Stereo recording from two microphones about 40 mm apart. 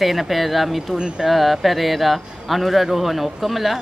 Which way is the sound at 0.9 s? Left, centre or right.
Centre.